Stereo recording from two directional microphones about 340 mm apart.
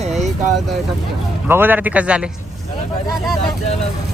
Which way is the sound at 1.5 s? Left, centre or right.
Centre.